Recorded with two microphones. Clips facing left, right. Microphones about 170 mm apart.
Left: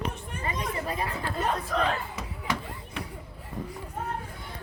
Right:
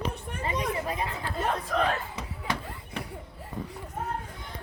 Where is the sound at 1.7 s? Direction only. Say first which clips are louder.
Right 2 dB; 55° right (ahead or behind).